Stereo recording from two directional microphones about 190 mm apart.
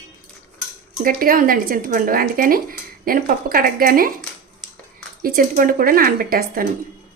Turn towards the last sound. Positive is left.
turn(degrees=-50)  # may be behind; listen again after turning